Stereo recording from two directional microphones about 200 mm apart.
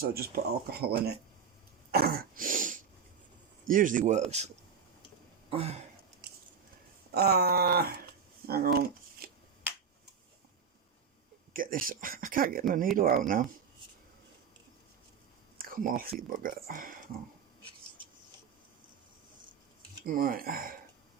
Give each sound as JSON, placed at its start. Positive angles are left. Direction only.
{"t": 0.0, "sound": "speech", "side_deg": -50}
{"t": 1.9, "sound": "throat clearing", "side_deg": -50}
{"t": 3.7, "sound": "speech", "side_deg": -40}
{"t": 5.5, "sound": "a sound", "side_deg": -30}
{"t": 6.2, "sound": "a sound", "side_deg": -55}
{"t": 7.1, "sound": "speech", "side_deg": -50}
{"t": 8.4, "sound": "shuffling cards", "side_deg": -50}
{"t": 11.5, "sound": "speech", "side_deg": -45}
{"t": 15.5, "sound": "a sound", "side_deg": -45}
{"t": 16.0, "sound": "speech", "side_deg": -45}
{"t": 20.1, "sound": "speech", "side_deg": -45}